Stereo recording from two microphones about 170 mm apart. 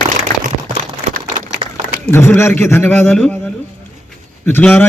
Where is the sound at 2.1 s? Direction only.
15° left (ahead or behind).